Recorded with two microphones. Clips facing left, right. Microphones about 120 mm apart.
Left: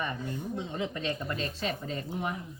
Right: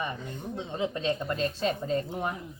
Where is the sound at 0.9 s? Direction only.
35° right (ahead or behind).